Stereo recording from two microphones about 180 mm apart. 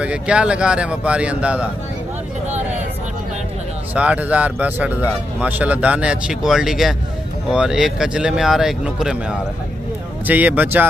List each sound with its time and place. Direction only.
0.0 s speech: 5° right (ahead or behind)
3.9 s speech: 5° right (ahead or behind)